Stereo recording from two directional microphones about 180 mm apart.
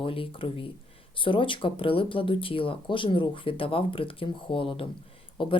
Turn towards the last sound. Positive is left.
turn(degrees=30)  # may be behind; listen again after turning